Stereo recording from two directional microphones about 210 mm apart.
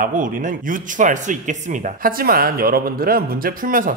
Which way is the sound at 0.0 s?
40° right (ahead or behind).